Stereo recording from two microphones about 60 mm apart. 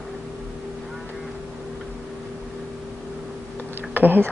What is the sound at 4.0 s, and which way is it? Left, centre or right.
Speech, right.